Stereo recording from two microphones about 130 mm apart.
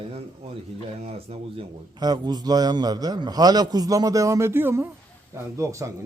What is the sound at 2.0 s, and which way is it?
A man's voice, 30° right (ahead or behind).